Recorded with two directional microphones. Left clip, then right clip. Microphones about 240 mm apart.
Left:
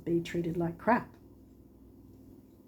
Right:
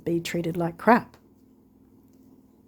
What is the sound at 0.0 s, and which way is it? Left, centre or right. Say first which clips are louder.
Speech: right 5 dB; right.